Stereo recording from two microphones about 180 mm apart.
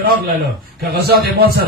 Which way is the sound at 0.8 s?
60° right (ahead or behind).